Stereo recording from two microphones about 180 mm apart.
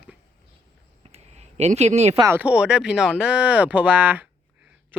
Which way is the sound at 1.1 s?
35° right (ahead or behind).